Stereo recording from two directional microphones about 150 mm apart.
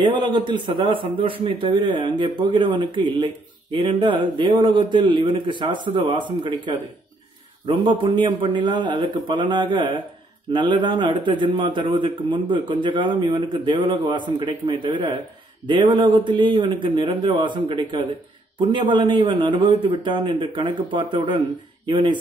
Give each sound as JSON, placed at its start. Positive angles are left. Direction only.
{"t": 0.0, "sound": "a man's voice", "side_deg": -30}